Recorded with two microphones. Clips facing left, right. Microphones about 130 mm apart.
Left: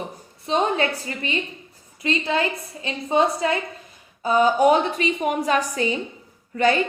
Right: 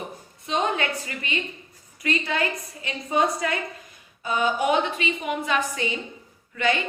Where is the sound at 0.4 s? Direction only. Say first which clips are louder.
Left 4 dB; 30° left (ahead or behind).